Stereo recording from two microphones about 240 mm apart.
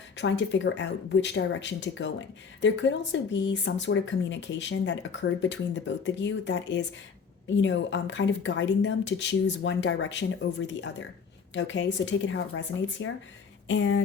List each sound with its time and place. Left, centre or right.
0.2 s speech: left
11.5 s speech: left